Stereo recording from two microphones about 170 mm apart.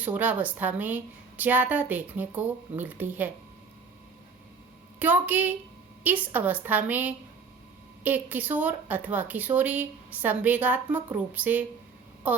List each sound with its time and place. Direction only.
0.0 s a woman's voice: 10° right (ahead or behind)
4.9 s a woman's voice: 10° right (ahead or behind)
12.2 s a sound: 10° right (ahead or behind)